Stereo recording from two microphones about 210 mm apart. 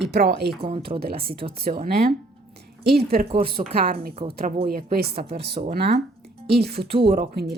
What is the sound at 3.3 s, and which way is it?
Speech, 25° right (ahead or behind).